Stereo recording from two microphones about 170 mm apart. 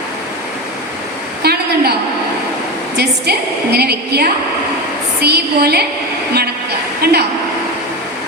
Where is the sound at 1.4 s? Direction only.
70° right (ahead or behind).